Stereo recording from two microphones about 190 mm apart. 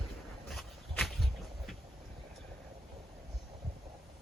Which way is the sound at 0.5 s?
Centre (ahead or behind).